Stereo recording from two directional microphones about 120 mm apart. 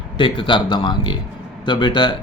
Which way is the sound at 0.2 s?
40° left (ahead or behind).